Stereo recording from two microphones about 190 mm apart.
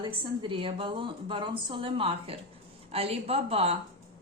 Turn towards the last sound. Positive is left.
turn(degrees=-30)  # may be behind; listen again after turning